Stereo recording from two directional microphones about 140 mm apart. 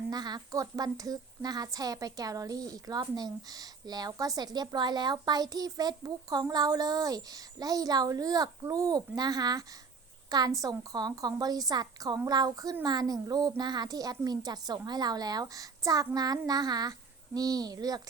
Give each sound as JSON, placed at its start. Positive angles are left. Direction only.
{"t": 0.1, "sound": "a woman's voice", "side_deg": -30}